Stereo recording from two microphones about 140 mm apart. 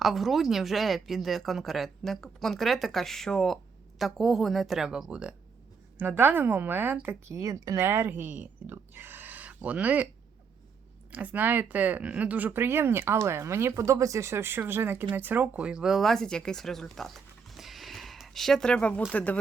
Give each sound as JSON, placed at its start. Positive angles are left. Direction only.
{"t": 0.0, "sound": "speech", "side_deg": 0}
{"t": 11.1, "sound": "speech", "side_deg": -10}